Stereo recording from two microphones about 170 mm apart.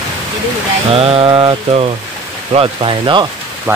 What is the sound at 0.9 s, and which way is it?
Speech, 35° right (ahead or behind).